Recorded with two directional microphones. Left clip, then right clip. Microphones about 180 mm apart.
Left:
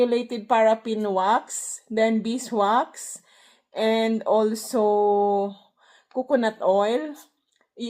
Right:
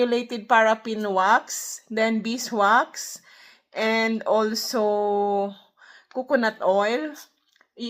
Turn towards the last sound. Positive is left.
turn(degrees=-10)  # may be behind; listen again after turning